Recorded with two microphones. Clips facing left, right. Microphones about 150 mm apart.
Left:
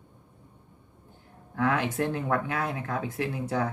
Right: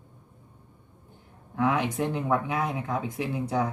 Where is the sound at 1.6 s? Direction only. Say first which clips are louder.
Right 1 dB; 15° right (ahead or behind).